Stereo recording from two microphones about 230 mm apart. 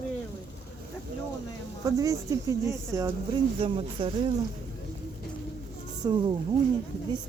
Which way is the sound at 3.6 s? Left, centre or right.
Right.